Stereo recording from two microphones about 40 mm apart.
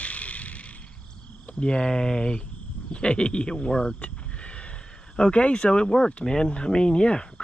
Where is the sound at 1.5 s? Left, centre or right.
Left.